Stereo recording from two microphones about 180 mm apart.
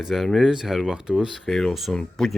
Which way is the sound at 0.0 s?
Centre (ahead or behind).